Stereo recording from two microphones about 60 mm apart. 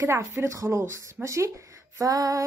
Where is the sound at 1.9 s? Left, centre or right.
Right.